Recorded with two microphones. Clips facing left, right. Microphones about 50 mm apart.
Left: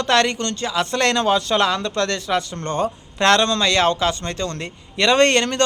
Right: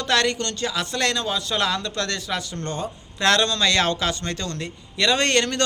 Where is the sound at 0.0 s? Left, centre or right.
Left.